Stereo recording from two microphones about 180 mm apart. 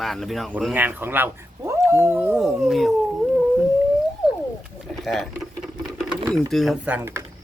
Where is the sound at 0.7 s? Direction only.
10° right (ahead or behind).